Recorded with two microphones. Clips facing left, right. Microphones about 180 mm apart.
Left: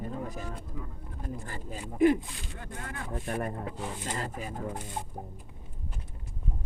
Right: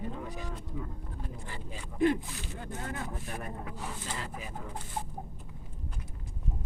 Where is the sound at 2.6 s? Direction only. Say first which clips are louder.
Right 2 dB; 20° right (ahead or behind).